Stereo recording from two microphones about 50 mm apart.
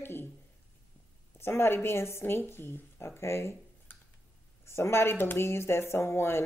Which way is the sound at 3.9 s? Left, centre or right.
Left.